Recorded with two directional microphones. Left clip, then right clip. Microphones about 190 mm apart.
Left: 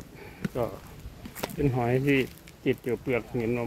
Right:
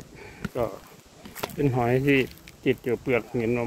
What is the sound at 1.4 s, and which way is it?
Speech, 20° right (ahead or behind).